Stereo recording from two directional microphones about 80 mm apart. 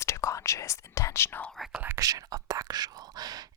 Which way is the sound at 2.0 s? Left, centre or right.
Right.